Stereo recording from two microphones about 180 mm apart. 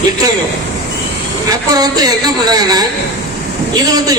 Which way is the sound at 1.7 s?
20° right (ahead or behind).